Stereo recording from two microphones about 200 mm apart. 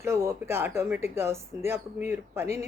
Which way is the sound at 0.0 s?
15° right (ahead or behind).